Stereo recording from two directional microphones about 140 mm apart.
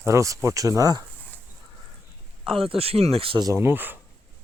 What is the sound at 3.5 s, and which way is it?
Speech, 15° right (ahead or behind).